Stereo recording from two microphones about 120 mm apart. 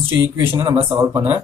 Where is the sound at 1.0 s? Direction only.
25° right (ahead or behind).